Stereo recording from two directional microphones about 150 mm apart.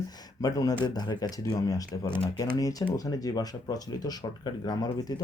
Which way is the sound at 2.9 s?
25° left (ahead or behind).